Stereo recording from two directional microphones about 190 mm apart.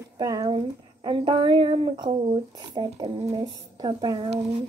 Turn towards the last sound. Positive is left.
turn(degrees=-25)  # may be behind; listen again after turning